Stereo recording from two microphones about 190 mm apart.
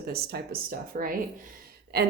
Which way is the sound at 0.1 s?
55° right (ahead or behind).